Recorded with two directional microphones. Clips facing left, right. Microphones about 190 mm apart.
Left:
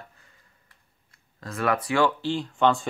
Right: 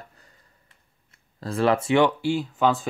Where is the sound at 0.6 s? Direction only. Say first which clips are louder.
Right 1 dB; 30° right (ahead or behind).